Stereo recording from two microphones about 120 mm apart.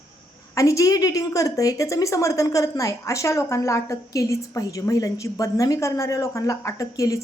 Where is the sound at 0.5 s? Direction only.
25° left (ahead or behind).